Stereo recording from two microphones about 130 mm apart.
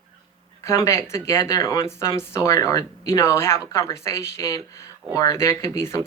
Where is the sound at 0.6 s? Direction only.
20° left (ahead or behind).